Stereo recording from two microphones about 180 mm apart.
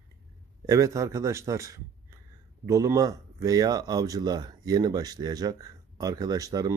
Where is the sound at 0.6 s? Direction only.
20° right (ahead or behind).